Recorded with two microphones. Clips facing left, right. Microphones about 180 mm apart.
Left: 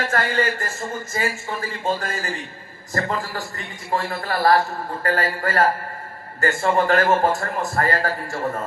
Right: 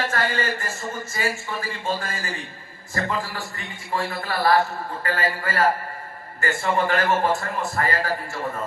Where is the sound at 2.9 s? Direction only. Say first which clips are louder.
Left 2 dB; 45° left (ahead or behind).